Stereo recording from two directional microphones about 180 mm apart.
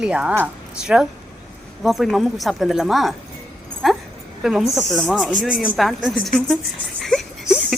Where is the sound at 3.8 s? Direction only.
Centre (ahead or behind).